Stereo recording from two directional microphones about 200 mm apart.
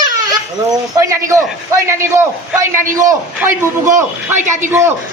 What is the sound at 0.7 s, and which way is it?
A man's voice, 15° right (ahead or behind).